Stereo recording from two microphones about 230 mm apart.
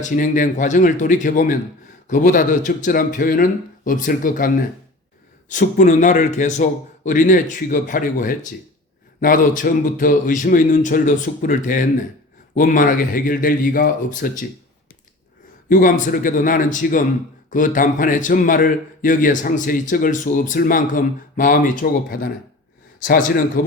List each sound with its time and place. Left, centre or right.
0.0 s a man's voice: left
15.7 s a man's voice: left